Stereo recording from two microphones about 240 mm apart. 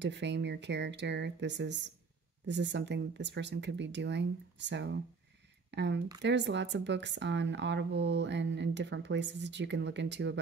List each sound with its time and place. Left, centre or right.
0.0 s speech: right